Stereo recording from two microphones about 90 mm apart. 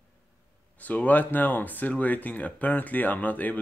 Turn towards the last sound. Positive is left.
turn(degrees=20)  # may be behind; listen again after turning